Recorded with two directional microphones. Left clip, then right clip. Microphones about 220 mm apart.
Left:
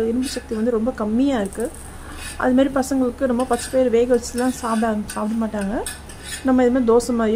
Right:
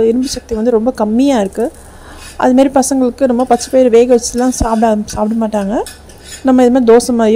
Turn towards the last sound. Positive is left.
turn(degrees=-30)  # may be behind; listen again after turning